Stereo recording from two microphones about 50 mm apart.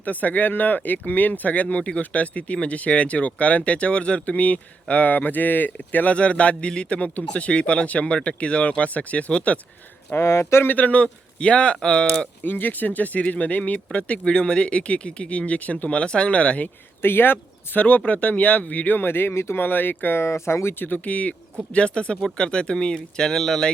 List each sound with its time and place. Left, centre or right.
0.0 s speech: left
1.7 s speech: left
6.1 s speech: left
10.2 s speech: left
10.7 s speech: left; by 12.3 s centre
12.4 s speech: left
17.0 s speech: left
17.8 s speech: left
19.5 s speech: left
20.2 s speech: left
20.7 s speech: left; by 23.7 s centre